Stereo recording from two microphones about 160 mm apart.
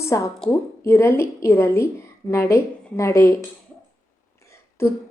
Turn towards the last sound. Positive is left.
turn(degrees=15)  # may be behind; listen again after turning